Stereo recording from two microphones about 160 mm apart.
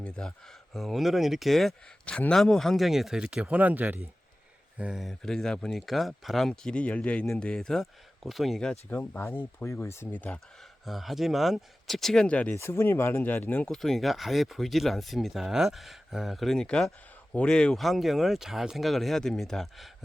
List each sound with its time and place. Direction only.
0.0 s speech: 5° left (ahead or behind)
8.9 s speech: 15° left (ahead or behind)
10.8 s speech: centre (ahead or behind)